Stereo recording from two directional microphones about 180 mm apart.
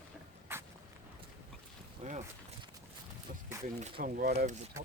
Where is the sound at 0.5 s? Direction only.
15° right (ahead or behind).